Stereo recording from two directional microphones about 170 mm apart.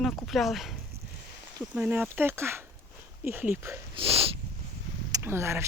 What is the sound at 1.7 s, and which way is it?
Speech, 5° right (ahead or behind).